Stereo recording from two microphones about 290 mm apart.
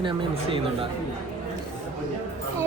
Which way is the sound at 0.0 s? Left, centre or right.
Centre.